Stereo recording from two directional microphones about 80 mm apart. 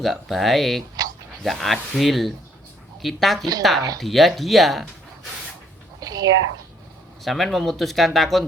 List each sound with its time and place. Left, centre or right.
0.0 s speech: centre
6.0 s a sound: right
7.3 s speech: centre